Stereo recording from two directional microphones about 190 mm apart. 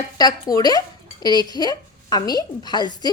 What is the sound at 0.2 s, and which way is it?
Speech, 20° left (ahead or behind).